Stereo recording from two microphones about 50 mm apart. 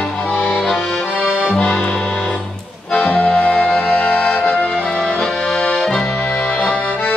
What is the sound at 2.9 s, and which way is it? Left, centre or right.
Accordion, left.